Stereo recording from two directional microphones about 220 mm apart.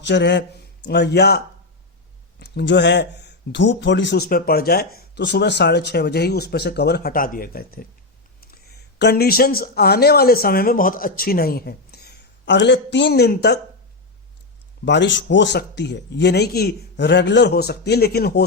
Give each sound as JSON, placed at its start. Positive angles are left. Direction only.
{"t": 0.0, "sound": "speech", "side_deg": 50}
{"t": 2.4, "sound": "speech", "side_deg": 50}
{"t": 9.0, "sound": "speech", "side_deg": 50}
{"t": 14.8, "sound": "speech", "side_deg": 55}